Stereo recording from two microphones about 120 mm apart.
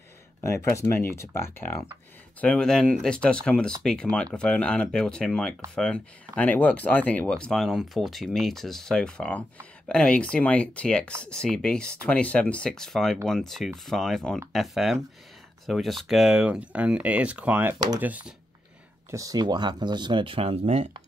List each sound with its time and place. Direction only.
0.4 s speech: 25° left (ahead or behind)
2.4 s speech: 5° left (ahead or behind); by 18.3 s 15° right (ahead or behind)
19.0 s speech: 30° right (ahead or behind); by 20.9 s 60° right (ahead or behind)